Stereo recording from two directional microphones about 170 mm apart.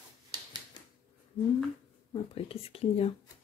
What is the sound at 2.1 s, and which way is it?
Speech, 35° left (ahead or behind).